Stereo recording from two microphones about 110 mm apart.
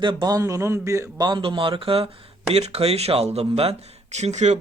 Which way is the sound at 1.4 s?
50° right (ahead or behind).